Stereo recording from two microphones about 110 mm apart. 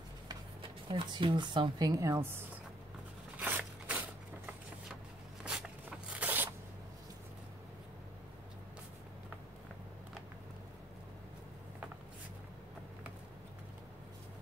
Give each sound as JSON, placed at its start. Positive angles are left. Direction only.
{"t": 0.6, "sound": "speech", "side_deg": -50}
{"t": 3.3, "sound": "a sound", "side_deg": -15}
{"t": 5.4, "sound": "zipper", "side_deg": -10}